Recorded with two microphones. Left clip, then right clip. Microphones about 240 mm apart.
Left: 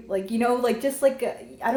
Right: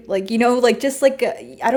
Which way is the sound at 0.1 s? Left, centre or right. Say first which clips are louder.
Right 6 dB; right.